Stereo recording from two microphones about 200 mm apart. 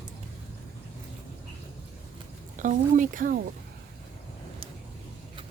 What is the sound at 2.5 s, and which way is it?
Speech, 40° right (ahead or behind).